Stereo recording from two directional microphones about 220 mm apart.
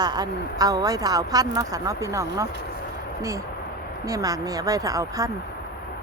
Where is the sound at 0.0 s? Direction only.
15° right (ahead or behind).